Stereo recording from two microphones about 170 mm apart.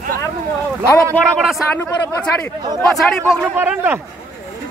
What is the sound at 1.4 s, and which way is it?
Speech, centre (ahead or behind).